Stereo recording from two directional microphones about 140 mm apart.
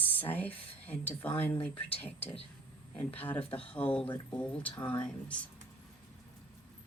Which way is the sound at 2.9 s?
10° left (ahead or behind).